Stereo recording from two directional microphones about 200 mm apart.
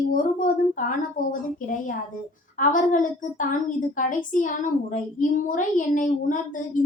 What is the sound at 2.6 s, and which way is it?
A woman's voice, 40° left (ahead or behind).